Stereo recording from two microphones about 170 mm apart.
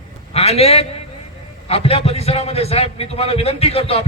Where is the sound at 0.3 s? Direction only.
35° left (ahead or behind).